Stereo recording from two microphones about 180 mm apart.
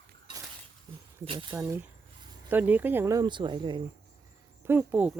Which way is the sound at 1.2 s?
30° right (ahead or behind).